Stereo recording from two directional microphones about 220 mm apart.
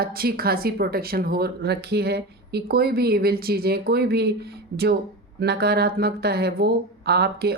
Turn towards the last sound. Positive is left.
turn(degrees=-45)  # may be behind; listen again after turning